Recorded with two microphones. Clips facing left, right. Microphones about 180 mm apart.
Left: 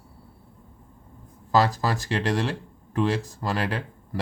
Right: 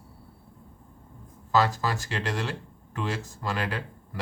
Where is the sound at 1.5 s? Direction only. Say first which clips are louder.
Left 3 dB; 35° left (ahead or behind).